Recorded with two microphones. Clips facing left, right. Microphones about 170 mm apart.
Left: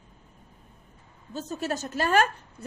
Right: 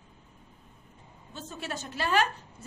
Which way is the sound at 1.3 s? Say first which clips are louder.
Left 7 dB; 40° left (ahead or behind).